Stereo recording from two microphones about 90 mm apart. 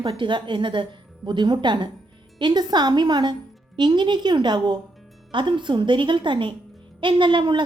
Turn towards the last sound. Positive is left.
turn(degrees=-65)  # may be behind; listen again after turning